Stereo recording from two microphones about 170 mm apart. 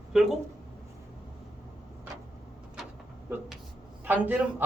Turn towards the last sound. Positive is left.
turn(degrees=-10)  # may be behind; listen again after turning